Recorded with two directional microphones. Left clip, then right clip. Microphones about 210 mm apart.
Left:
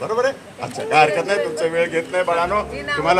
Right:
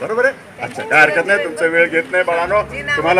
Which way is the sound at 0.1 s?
5° left (ahead or behind).